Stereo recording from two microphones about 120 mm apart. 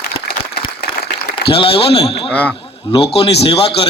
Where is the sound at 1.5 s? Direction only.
50° left (ahead or behind).